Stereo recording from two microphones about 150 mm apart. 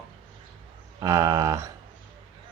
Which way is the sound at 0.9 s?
20° right (ahead or behind).